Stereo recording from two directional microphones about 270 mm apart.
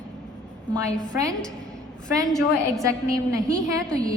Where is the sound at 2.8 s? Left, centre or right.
Centre.